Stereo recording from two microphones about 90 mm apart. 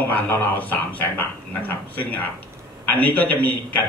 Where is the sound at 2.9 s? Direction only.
20° left (ahead or behind).